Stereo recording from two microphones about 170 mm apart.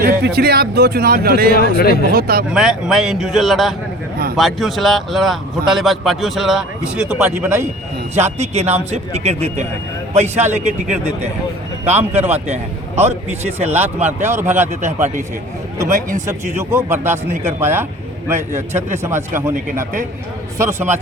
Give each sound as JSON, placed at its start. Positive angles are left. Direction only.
{"t": 0.0, "sound": "a man's voice", "side_deg": -65}
{"t": 1.5, "sound": "speech", "side_deg": 65}
{"t": 2.1, "sound": "speech", "side_deg": -60}
{"t": 2.5, "sound": "a man's voice", "side_deg": -5}
{"t": 8.2, "sound": "a man's voice", "side_deg": -40}
{"t": 11.9, "sound": "a man's voice", "side_deg": -10}
{"t": 13.6, "sound": "a man's voice", "side_deg": -10}
{"t": 15.9, "sound": "speech", "side_deg": -50}
{"t": 16.6, "sound": "a man's voice", "side_deg": -15}